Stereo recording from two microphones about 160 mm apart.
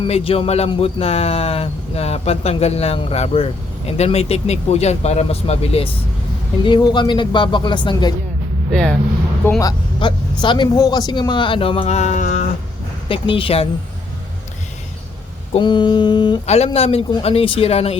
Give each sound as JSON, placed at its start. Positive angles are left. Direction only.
{"t": 0.0, "sound": "speech", "side_deg": 35}
{"t": 6.7, "sound": "speech", "side_deg": 30}
{"t": 8.7, "sound": "speech", "side_deg": 5}
{"t": 9.6, "sound": "speech", "side_deg": 25}
{"t": 13.1, "sound": "speech", "side_deg": 35}
{"t": 15.5, "sound": "speech", "side_deg": 30}
{"t": 16.7, "sound": "speech", "side_deg": 40}